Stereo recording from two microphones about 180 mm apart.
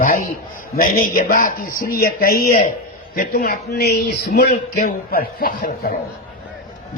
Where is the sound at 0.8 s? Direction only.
50° left (ahead or behind).